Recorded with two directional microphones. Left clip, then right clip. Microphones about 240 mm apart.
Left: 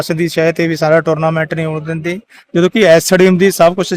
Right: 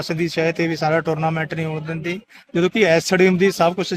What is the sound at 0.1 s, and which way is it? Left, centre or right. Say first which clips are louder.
Speech: left 6 dB; left.